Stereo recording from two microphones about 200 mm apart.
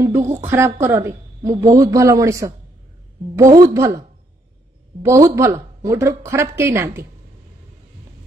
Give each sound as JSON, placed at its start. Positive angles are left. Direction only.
{"t": 0.0, "sound": "a woman's voice", "side_deg": -15}
{"t": 5.0, "sound": "a woman's voice", "side_deg": -15}